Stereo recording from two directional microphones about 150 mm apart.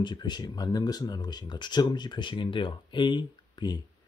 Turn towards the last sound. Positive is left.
turn(degrees=30)  # may be behind; listen again after turning